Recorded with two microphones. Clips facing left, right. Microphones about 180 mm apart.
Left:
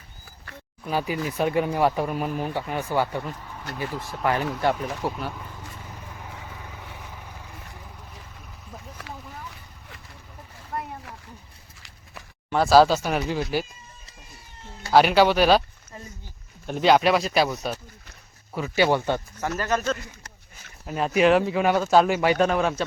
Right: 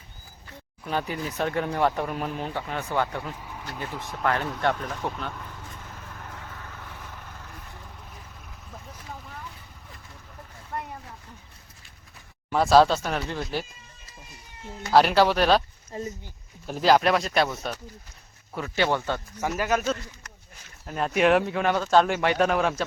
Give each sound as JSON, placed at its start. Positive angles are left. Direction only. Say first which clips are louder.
{"t": 0.9, "sound": "speech", "louder": "left 3 dB", "side_deg": 10}
{"t": 3.2, "sound": "speech", "louder": "left 1 dB", "side_deg": -5}
{"t": 3.8, "sound": "vehicle", "louder": "left 3 dB", "side_deg": 0}
{"t": 12.5, "sound": "speech", "louder": "left 2 dB", "side_deg": 0}
{"t": 14.9, "sound": "speech", "louder": "left 2 dB", "side_deg": 0}
{"t": 15.9, "sound": "speech", "louder": "right 9 dB", "side_deg": -30}
{"t": 16.6, "sound": "speech", "louder": "left 1 dB", "side_deg": 0}
{"t": 19.4, "sound": "speech", "louder": "even", "side_deg": -10}
{"t": 20.8, "sound": "speech", "louder": "left 2 dB", "side_deg": 5}